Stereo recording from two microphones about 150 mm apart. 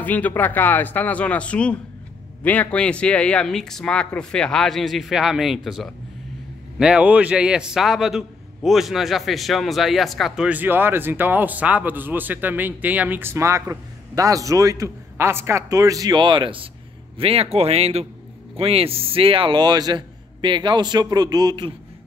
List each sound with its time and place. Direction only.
0.0 s a man's voice: 10° left (ahead or behind); by 21.7 s 30° right (ahead or behind)